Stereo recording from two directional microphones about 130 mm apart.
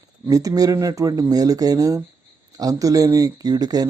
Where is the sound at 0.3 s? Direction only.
25° right (ahead or behind).